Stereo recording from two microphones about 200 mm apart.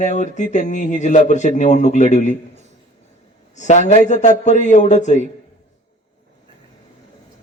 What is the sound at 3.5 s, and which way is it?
Speech, 35° left (ahead or behind).